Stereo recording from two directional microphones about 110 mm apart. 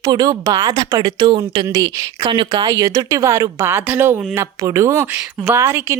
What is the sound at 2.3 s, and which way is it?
Speech, 50° right (ahead or behind).